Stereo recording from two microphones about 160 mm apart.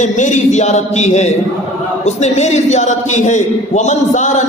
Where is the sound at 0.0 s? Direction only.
50° left (ahead or behind).